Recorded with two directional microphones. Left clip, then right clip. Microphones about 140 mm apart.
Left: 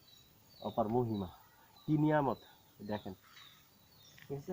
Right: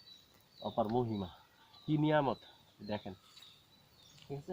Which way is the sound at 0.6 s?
5° right (ahead or behind).